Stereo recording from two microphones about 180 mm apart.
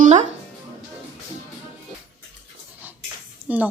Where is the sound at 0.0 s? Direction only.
40° right (ahead or behind).